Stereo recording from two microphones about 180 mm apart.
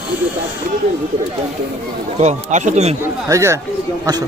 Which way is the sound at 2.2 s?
40° right (ahead or behind).